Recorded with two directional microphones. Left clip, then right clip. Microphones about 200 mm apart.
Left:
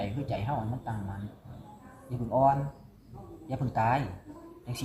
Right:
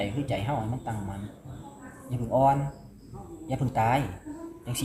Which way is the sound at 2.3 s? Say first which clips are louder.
Right 2 dB; 20° right (ahead or behind).